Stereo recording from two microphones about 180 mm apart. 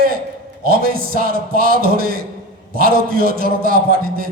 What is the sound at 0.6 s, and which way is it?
A man's voice, 55° right (ahead or behind).